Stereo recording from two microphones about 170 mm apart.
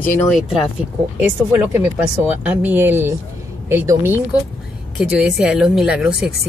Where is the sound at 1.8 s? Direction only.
10° right (ahead or behind).